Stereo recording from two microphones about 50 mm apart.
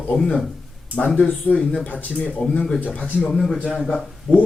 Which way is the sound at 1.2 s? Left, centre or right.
Left.